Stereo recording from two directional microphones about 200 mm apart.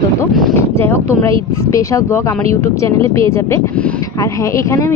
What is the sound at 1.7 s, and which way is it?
Speech, 15° left (ahead or behind).